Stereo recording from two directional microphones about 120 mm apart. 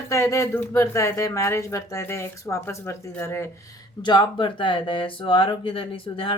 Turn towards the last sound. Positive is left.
turn(degrees=50)  # may be behind; listen again after turning